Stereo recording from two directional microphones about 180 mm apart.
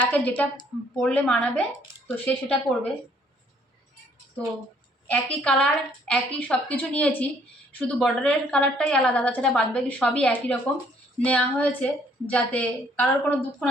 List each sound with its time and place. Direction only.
0.0 s a woman's voice: 10° left (ahead or behind)
5.0 s a woman's voice: 10° left (ahead or behind)